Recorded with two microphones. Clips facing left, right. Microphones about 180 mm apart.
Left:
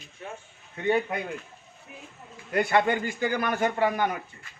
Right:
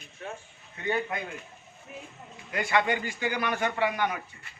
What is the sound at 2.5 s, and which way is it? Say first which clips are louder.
A man's voice: left 4 dB; 50° left (ahead or behind).